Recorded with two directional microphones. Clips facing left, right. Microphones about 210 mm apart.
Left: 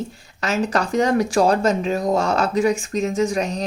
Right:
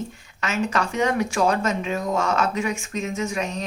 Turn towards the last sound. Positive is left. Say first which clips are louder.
# left 6 dB
turn(degrees=35)  # may be behind; listen again after turning